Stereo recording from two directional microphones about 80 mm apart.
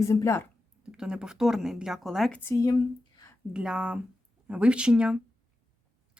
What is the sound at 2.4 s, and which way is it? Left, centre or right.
Speech, left.